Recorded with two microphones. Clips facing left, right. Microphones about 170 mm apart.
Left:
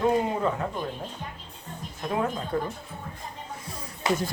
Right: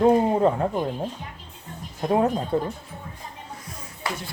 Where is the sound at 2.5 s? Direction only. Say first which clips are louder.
Right 1 dB; 20° right (ahead or behind).